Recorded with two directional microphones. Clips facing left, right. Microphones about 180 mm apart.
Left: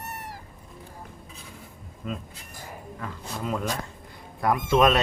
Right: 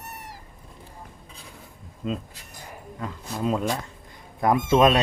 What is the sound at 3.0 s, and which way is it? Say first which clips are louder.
Speech: right 5 dB; 20° right (ahead or behind).